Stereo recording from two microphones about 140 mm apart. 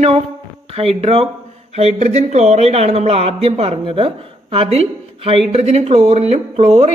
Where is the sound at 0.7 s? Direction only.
45° right (ahead or behind).